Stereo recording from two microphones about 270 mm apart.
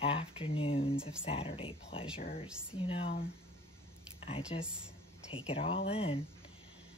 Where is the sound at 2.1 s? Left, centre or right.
Left.